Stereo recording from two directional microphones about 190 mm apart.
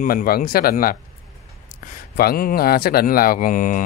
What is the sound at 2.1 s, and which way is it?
Speech, 50° left (ahead or behind).